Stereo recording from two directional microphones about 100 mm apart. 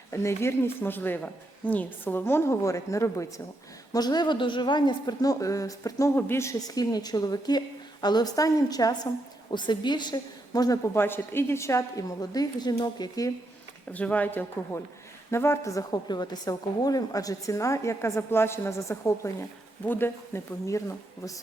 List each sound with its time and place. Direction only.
0.1 s a woman's voice: 30° left (ahead or behind)
3.9 s a woman's voice: 40° left (ahead or behind)
6.1 s a woman's voice: 20° left (ahead or behind); by 10.8 s 40° left (ahead or behind)
10.9 s a woman's voice: 25° left (ahead or behind); by 13.3 s 40° left (ahead or behind)
13.9 s a woman's voice: 15° left (ahead or behind)